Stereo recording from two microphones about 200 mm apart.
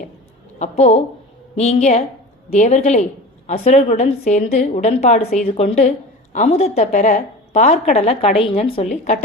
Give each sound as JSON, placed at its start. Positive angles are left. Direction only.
{"t": 0.6, "sound": "a woman's voice", "side_deg": 30}
{"t": 4.2, "sound": "a woman's voice", "side_deg": 45}
{"t": 4.4, "sound": "a woman's voice", "side_deg": 35}